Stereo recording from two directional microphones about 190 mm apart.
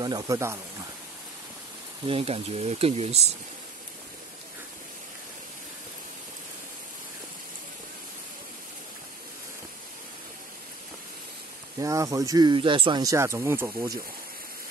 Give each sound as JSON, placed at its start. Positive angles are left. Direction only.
{"t": 0.0, "sound": "speech", "side_deg": -20}
{"t": 2.0, "sound": "speech", "side_deg": -30}
{"t": 11.8, "sound": "speech", "side_deg": -15}